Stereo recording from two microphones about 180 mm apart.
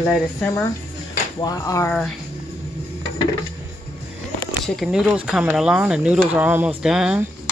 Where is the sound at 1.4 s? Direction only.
20° left (ahead or behind).